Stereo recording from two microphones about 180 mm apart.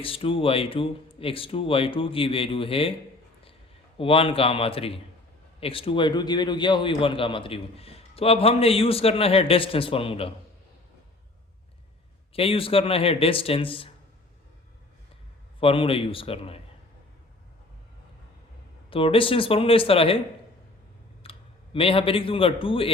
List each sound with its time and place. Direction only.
0.0 s a man's voice: 30° left (ahead or behind)
3.9 s a man's voice: 30° left (ahead or behind)
12.3 s a man's voice: 30° left (ahead or behind)
15.6 s a man's voice: 30° left (ahead or behind)
18.9 s a man's voice: 30° left (ahead or behind)
21.2 s speech: 30° left (ahead or behind)